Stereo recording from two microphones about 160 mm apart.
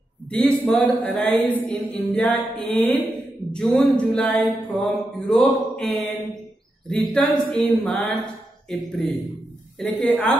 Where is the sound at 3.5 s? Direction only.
5° left (ahead or behind).